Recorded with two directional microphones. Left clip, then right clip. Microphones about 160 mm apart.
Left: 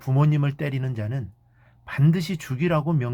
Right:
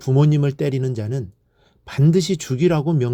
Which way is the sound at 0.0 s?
40° right (ahead or behind).